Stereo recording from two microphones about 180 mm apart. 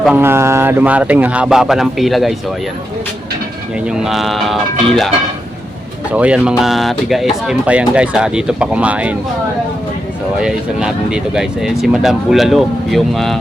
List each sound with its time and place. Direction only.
0.0 s speech: 10° right (ahead or behind)
3.9 s speech: centre (ahead or behind)
6.1 s speech: 5° right (ahead or behind)
10.4 s speech: 5° right (ahead or behind)